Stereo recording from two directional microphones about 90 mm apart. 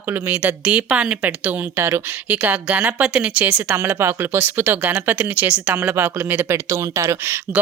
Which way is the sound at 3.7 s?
25° right (ahead or behind).